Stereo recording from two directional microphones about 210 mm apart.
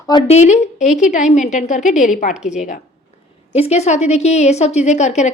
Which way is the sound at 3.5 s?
30° left (ahead or behind).